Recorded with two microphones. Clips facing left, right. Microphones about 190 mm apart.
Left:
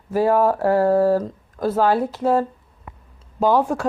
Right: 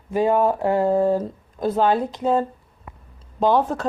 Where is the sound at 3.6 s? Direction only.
10° left (ahead or behind).